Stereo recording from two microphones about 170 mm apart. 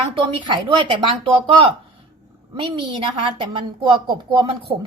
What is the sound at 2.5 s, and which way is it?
A woman's voice, 30° right (ahead or behind).